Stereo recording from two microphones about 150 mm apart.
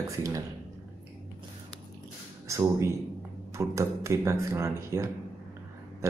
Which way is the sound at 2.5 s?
20° right (ahead or behind).